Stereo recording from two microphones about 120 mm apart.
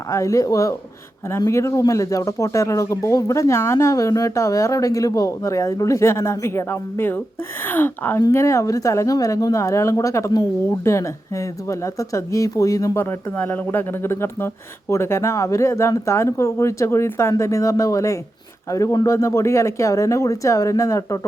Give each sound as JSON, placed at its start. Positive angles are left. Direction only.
{"t": 0.1, "sound": "speech", "side_deg": 25}